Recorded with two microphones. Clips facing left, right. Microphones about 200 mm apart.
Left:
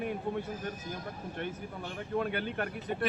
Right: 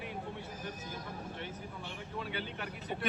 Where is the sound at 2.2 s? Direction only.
55° left (ahead or behind).